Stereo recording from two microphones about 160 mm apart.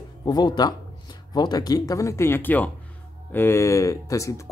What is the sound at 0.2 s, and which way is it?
Speech, 25° left (ahead or behind).